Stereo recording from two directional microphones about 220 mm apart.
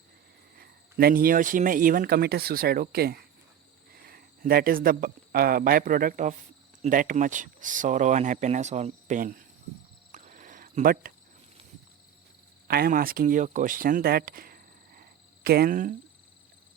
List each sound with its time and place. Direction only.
0.5 s speech: 45° right (ahead or behind)
10.1 s a sound: 35° right (ahead or behind)
12.6 s speech: 45° right (ahead or behind)